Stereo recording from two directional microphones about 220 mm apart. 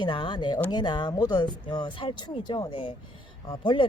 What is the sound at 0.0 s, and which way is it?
Speech, 20° left (ahead or behind).